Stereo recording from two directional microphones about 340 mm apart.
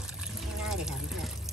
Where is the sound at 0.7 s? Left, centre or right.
Centre.